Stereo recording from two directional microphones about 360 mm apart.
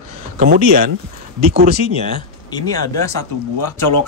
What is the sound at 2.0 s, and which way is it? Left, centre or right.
Speech, centre.